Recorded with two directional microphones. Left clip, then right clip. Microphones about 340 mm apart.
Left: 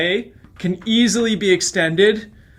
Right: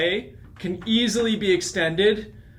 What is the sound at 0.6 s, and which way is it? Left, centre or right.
Speech, left.